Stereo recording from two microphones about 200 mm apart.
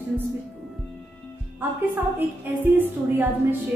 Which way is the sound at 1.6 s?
10° right (ahead or behind).